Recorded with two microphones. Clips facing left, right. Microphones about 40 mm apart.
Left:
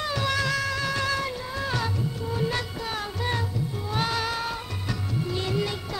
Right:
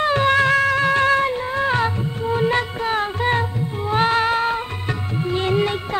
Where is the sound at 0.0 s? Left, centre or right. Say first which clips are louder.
Right 10 dB; right.